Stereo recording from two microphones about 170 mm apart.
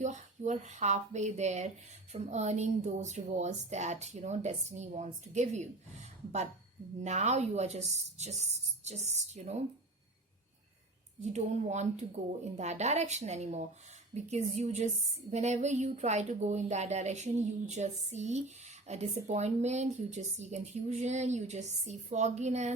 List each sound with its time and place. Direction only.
0.0 s speech: 45° right (ahead or behind)
11.3 s speech: 40° right (ahead or behind)